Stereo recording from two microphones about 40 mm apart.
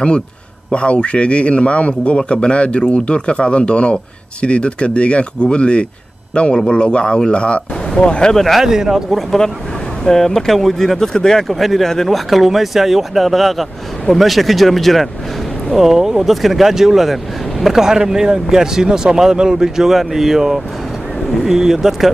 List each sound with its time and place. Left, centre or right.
0.7 s a man's voice: left
8.4 s speech: centre
8.6 s speech: centre
10.0 s speech: centre
11.0 s speech: centre
11.4 s speech: centre
12.3 s speech: centre
15.7 s speech: centre